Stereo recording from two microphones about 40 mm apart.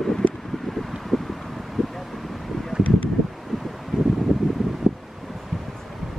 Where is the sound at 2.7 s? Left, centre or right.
Right.